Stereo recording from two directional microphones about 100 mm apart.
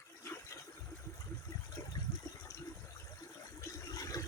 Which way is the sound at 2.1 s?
40° left (ahead or behind).